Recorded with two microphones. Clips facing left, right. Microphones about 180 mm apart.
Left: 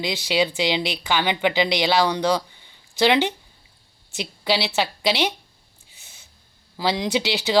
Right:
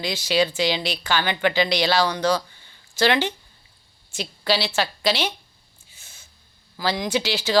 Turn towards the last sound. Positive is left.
turn(degrees=20)  # may be behind; listen again after turning